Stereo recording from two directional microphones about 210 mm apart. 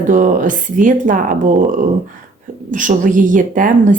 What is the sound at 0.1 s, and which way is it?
Speech, 40° right (ahead or behind).